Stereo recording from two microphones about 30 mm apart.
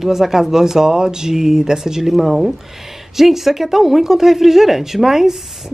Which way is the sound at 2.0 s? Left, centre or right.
Centre.